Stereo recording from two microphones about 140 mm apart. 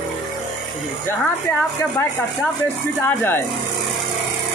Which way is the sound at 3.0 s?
15° left (ahead or behind).